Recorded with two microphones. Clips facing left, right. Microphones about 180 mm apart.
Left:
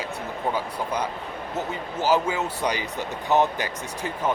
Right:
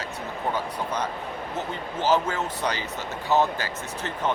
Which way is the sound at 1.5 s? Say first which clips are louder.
Left 3 dB; 10° left (ahead or behind).